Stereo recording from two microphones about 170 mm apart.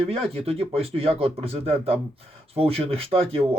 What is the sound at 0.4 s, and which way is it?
Speech, 35° right (ahead or behind).